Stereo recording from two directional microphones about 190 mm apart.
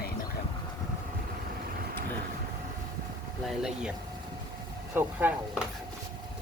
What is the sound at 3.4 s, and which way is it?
Speech, 5° right (ahead or behind).